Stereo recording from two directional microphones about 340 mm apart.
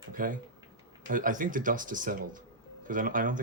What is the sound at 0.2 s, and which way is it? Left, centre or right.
Speech, right.